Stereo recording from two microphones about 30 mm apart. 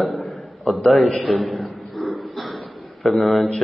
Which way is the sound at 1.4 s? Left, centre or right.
Centre.